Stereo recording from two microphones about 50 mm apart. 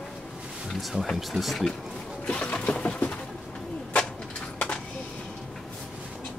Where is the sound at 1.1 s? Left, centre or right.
Centre.